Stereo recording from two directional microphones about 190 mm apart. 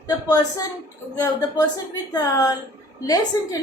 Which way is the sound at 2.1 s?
20° left (ahead or behind).